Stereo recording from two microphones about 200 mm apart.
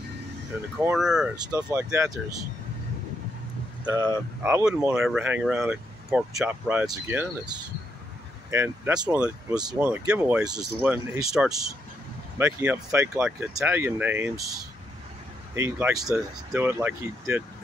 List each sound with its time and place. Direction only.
0.7 s speech: 5° right (ahead or behind)
1.3 s speech: 15° right (ahead or behind)
3.8 s speech: 15° right (ahead or behind)
15.5 s speech: 10° right (ahead or behind)